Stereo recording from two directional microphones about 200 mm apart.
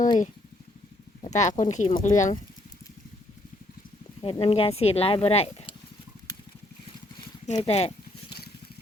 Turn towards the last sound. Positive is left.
turn(degrees=30)  # may be behind; listen again after turning